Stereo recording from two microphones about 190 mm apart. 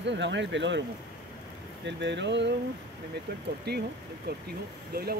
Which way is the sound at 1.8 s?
70° right (ahead or behind).